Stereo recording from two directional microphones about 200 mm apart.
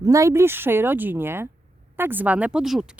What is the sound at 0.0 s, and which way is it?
Speech, 15° right (ahead or behind).